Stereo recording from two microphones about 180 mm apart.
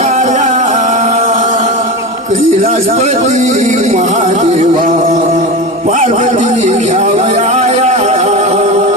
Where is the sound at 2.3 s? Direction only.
50° right (ahead or behind).